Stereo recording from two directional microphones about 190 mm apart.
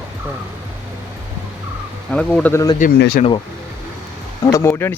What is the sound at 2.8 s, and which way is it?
Speech, 55° left (ahead or behind).